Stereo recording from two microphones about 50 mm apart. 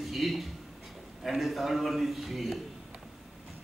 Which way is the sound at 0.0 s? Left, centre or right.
Centre.